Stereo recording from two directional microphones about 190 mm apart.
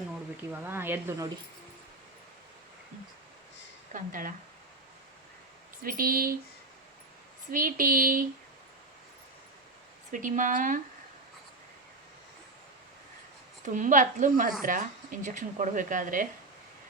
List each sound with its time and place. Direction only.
0.5 s speech: 10° right (ahead or behind)
3.9 s speech: 45° right (ahead or behind)
5.8 s speech: 50° right (ahead or behind)
7.5 s speech: 45° right (ahead or behind)
10.1 s speech: 45° right (ahead or behind)
13.7 s speech: 45° right (ahead or behind)